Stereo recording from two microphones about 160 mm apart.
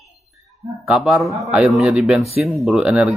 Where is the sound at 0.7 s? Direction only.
Centre (ahead or behind).